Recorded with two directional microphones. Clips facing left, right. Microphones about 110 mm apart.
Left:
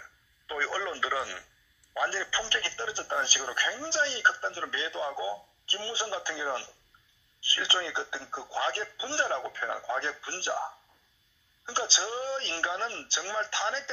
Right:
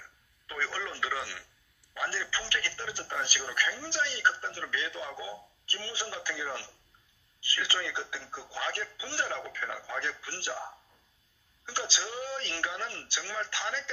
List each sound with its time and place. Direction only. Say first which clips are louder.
0.5 s telephone: left 4 dB; 25° left (ahead or behind)
2.0 s speech: left 4 dB; 25° left (ahead or behind)
11.6 s speech: left 3 dB; 30° left (ahead or behind)